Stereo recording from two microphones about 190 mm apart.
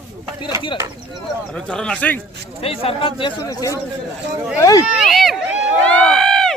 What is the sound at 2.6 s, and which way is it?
Speech, 30° left (ahead or behind).